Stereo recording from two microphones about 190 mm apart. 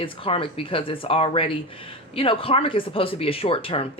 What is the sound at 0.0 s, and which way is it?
Speech, 30° left (ahead or behind).